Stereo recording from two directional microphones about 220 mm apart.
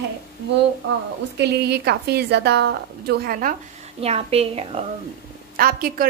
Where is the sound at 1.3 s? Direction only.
50° right (ahead or behind).